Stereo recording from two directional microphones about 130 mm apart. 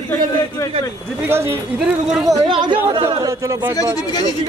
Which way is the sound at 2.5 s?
35° right (ahead or behind).